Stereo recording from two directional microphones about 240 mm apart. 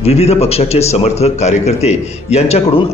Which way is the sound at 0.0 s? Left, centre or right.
Left.